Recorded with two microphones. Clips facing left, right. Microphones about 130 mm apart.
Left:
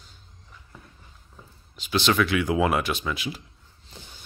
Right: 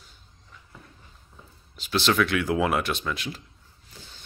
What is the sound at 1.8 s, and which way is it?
Speech, centre (ahead or behind).